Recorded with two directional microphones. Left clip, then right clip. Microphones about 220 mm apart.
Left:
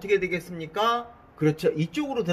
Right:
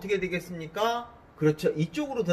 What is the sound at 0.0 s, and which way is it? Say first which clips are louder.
Speech: left 4 dB; 40° left (ahead or behind).